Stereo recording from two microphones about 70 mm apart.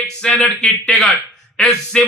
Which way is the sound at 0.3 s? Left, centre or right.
Centre.